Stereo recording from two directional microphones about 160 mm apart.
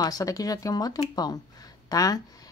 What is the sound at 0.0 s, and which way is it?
Speech, 20° left (ahead or behind).